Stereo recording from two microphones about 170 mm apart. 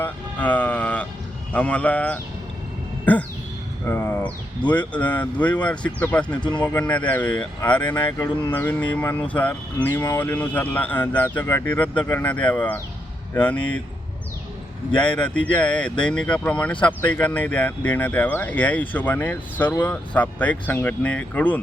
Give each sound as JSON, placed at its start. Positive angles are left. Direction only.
{"t": 0.0, "sound": "vehicle", "side_deg": 10}
{"t": 1.5, "sound": "speech", "side_deg": 10}
{"t": 7.9, "sound": "speech", "side_deg": 25}
{"t": 8.5, "sound": "speech", "side_deg": 10}
{"t": 15.0, "sound": "speech", "side_deg": 5}